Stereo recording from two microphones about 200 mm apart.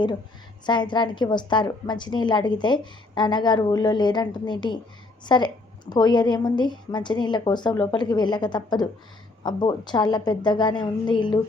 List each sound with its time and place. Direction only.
0.6 s a woman's voice: 20° left (ahead or behind)